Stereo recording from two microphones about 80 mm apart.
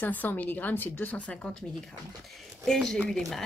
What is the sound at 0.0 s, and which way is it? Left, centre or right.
A woman's voice, left.